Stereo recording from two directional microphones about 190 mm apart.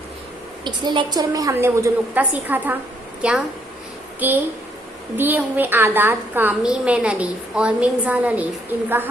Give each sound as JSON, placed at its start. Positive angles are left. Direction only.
{"t": 0.6, "sound": "a woman's voice", "side_deg": -25}